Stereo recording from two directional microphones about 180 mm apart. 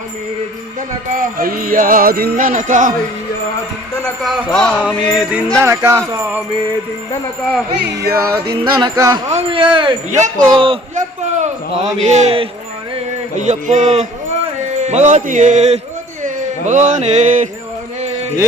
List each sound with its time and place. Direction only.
1.1 s jingle bell: 50° right (ahead or behind)
4.2 s speech: centre (ahead or behind)
4.9 s music: 25° left (ahead or behind)
5.1 s speech: 10° right (ahead or behind)
8.0 s music: 15° right (ahead or behind)
10.1 s jingle bell: 40° right (ahead or behind)
10.3 s music: 20° right (ahead or behind)
10.9 s a sound: 40° right (ahead or behind)
12.0 s music: 40° right (ahead or behind)
16.2 s speech: 45° right (ahead or behind)